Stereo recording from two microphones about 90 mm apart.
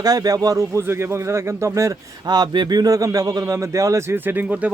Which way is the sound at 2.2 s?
50° right (ahead or behind).